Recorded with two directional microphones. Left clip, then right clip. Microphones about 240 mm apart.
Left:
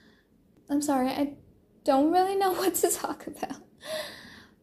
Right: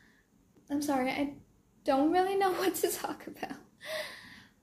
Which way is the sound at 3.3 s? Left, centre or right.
Centre.